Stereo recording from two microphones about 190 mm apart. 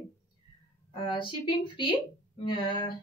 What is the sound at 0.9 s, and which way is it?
Speech, 25° left (ahead or behind).